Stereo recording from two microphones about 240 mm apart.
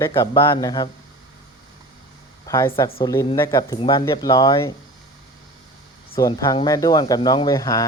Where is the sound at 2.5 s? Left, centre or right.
Centre.